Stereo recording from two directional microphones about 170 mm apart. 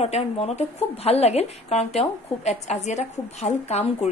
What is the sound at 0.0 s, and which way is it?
A woman's voice, 40° left (ahead or behind).